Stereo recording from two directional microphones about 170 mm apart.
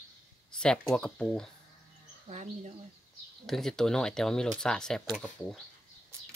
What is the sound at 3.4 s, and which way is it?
Speech, centre (ahead or behind).